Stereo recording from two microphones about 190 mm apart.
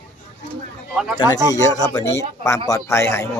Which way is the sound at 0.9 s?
Centre (ahead or behind).